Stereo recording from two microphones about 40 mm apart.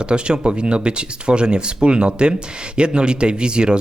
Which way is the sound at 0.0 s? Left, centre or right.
Right.